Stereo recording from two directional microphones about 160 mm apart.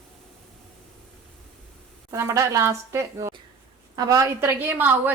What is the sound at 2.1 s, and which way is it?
Speech, 15° right (ahead or behind).